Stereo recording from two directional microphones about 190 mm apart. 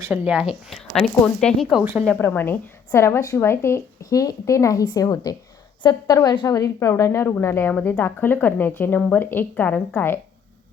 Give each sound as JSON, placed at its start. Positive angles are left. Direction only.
{"t": 0.0, "sound": "speech", "side_deg": -10}
{"t": 1.8, "sound": "a woman's voice", "side_deg": -10}
{"t": 2.0, "sound": "a woman's voice", "side_deg": 10}